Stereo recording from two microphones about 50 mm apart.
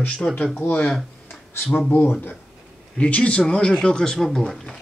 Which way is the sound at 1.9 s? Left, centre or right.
Left.